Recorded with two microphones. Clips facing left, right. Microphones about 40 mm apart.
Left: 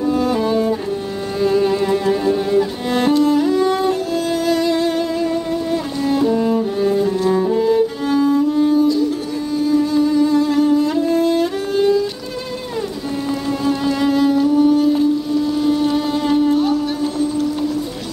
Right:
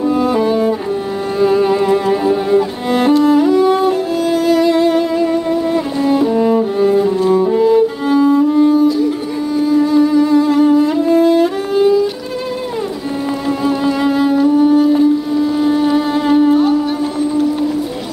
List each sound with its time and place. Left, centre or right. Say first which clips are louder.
0.0 s music: right 3 dB; centre
13.5 s music: right 4 dB; centre